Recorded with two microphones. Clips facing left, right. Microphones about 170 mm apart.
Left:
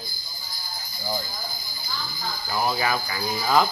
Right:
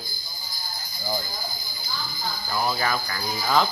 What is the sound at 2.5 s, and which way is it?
Speech, 10° left (ahead or behind).